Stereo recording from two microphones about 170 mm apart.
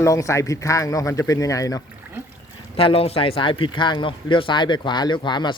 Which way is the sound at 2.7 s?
35° left (ahead or behind).